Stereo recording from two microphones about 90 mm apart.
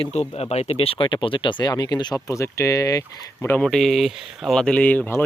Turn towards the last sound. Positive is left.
turn(degrees=20)  # may be behind; listen again after turning